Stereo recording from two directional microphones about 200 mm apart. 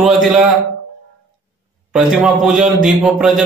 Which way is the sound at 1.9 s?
5° right (ahead or behind).